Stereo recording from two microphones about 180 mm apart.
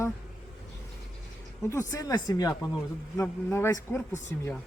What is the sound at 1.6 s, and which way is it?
A man's voice, 15° left (ahead or behind).